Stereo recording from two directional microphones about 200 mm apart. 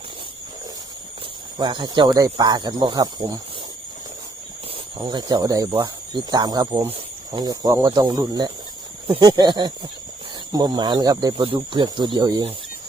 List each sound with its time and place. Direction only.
1.5 s speech: 20° right (ahead or behind)
4.9 s speech: 20° right (ahead or behind)